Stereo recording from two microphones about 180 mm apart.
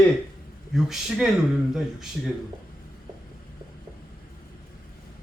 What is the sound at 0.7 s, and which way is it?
Speech, centre (ahead or behind).